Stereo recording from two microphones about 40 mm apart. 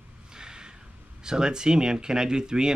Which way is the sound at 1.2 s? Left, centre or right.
Centre.